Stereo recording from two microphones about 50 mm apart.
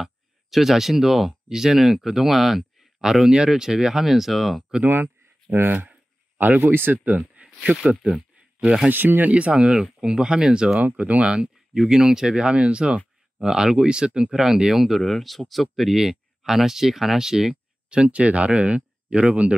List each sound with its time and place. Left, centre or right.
0.0 s speech: centre
4.8 s speech: right
6.5 s speech: right
7.6 s speech: right
8.9 s speech: right
9.3 s speech: right
11.0 s speech: right
11.3 s speech: centre